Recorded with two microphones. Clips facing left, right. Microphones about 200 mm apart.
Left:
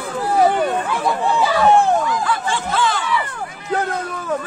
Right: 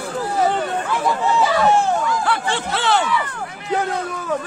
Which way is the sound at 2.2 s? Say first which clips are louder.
Even; 70° right (ahead or behind).